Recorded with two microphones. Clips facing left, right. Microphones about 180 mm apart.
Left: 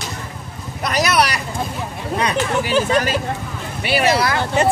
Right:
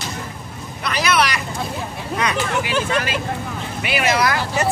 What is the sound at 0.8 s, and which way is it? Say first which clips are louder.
Boat: left 2 dB; 40° left (ahead or behind).